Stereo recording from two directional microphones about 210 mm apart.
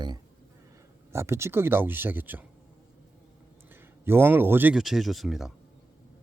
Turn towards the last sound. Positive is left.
turn(degrees=0)  # may be behind; listen again after turning